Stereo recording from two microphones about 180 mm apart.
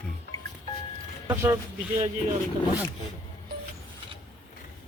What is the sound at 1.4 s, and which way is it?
Speech, 15° right (ahead or behind).